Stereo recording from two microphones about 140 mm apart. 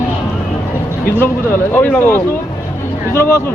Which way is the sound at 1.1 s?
15° left (ahead or behind).